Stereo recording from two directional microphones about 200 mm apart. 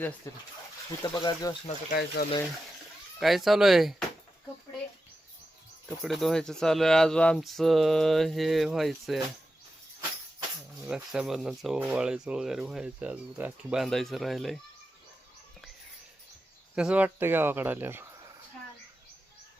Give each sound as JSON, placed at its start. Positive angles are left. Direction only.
{"t": 0.3, "sound": "speech", "side_deg": 15}
{"t": 1.9, "sound": "speech", "side_deg": 50}
{"t": 3.2, "sound": "speech", "side_deg": 0}
{"t": 6.0, "sound": "speech", "side_deg": 0}
{"t": 10.8, "sound": "speech", "side_deg": -5}
{"t": 16.7, "sound": "speech", "side_deg": -5}